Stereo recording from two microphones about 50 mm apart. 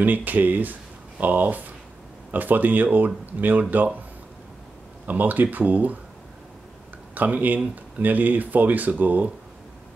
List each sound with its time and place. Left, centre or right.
0.0 s speech: right
5.0 s speech: right
7.2 s speech: right